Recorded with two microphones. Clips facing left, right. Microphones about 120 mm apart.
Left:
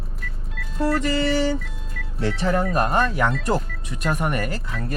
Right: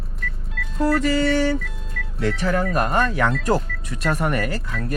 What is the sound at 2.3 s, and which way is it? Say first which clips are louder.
Speech: left 1 dB; 25° left (ahead or behind).